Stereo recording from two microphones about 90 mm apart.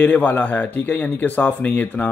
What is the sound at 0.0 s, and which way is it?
Speech, 15° left (ahead or behind).